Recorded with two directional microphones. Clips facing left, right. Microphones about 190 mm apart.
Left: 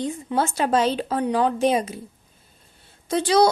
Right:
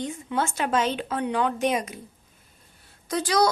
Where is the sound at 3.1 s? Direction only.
25° left (ahead or behind).